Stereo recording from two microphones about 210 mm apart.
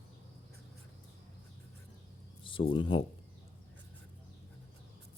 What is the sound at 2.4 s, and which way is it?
Speech, 25° left (ahead or behind).